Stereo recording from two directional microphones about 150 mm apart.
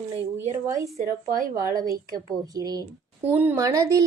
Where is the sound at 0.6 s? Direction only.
20° right (ahead or behind).